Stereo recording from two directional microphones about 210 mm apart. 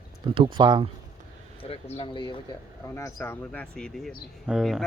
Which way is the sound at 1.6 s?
30° left (ahead or behind).